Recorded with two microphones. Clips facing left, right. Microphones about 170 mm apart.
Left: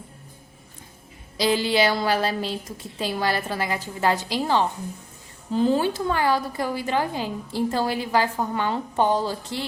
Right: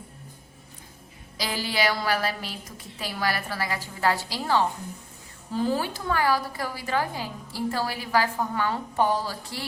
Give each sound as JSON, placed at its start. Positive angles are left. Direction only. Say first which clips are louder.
{"t": 1.4, "sound": "a woman's voice", "louder": "left 7 dB", "side_deg": 25}